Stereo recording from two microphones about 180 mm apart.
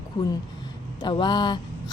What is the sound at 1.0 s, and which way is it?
Speech, 25° left (ahead or behind).